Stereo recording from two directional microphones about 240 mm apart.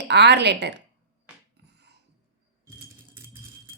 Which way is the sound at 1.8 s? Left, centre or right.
Right.